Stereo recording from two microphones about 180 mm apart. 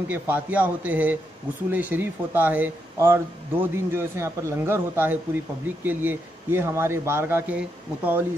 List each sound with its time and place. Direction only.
0.1 s speech: 10° right (ahead or behind)